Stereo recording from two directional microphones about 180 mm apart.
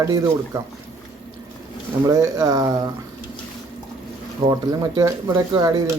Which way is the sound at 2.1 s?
20° right (ahead or behind).